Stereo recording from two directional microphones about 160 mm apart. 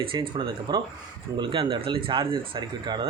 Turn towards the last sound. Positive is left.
turn(degrees=-30)  # may be behind; listen again after turning